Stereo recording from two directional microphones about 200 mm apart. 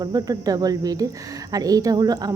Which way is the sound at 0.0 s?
20° right (ahead or behind).